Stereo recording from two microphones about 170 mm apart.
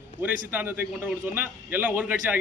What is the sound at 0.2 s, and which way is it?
A man's voice, 15° right (ahead or behind).